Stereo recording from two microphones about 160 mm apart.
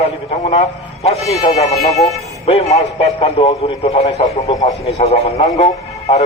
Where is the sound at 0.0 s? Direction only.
45° left (ahead or behind).